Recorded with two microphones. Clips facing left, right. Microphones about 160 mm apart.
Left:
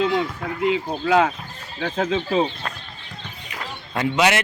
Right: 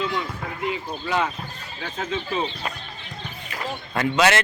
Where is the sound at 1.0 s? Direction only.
90° left.